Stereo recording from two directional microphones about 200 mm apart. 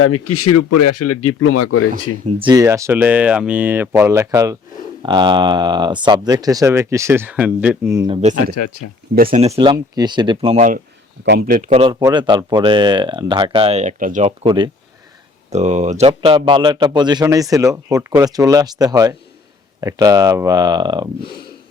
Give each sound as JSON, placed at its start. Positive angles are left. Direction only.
{"t": 0.0, "sound": "speech", "side_deg": 90}
{"t": 2.2, "sound": "speech", "side_deg": -25}
{"t": 7.9, "sound": "speech", "side_deg": -25}
{"t": 9.1, "sound": "speech", "side_deg": -45}
{"t": 9.5, "sound": "speech", "side_deg": -20}
{"t": 15.4, "sound": "speech", "side_deg": -35}